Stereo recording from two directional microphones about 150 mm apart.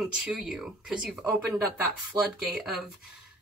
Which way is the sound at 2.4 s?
5° right (ahead or behind).